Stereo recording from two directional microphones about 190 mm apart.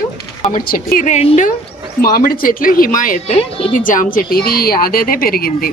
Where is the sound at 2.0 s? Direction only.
50° left (ahead or behind).